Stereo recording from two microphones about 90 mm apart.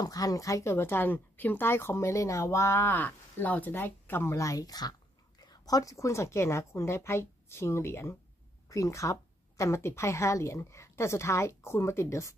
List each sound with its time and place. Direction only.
0.0 s speech: 45° left (ahead or behind); by 4.4 s 25° left (ahead or behind)
4.4 s a woman's voice: 40° left (ahead or behind)